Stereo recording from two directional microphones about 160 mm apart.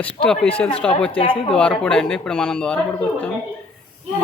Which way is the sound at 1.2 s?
35° left (ahead or behind).